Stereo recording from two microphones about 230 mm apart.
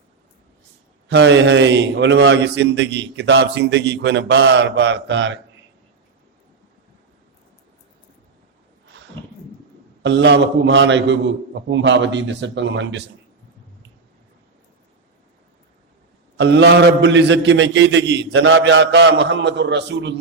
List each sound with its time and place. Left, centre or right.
1.0 s a man's voice: right
10.0 s a man's voice: right
16.4 s a man's voice: right